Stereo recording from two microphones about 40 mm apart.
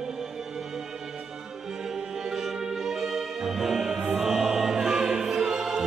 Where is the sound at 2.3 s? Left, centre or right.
Centre.